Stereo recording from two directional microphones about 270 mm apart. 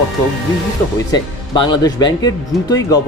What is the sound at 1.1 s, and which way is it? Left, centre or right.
Speech, centre.